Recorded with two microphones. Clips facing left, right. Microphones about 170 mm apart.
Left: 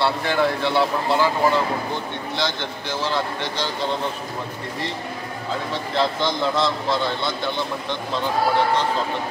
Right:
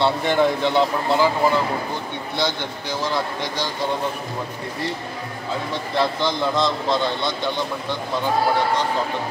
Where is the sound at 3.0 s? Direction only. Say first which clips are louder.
Even; 10° right (ahead or behind).